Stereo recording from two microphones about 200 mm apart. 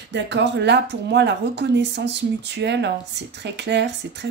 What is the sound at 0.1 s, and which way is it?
Speech, 60° right (ahead or behind).